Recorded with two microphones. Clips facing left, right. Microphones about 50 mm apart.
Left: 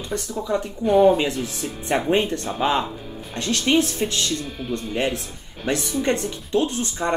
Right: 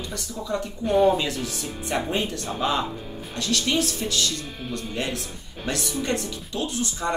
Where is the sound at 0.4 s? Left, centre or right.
Left.